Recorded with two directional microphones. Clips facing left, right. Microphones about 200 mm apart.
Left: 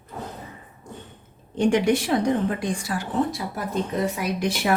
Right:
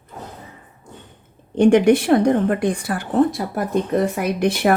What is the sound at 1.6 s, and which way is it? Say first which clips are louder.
A woman's voice: right 7 dB; 55° right (ahead or behind).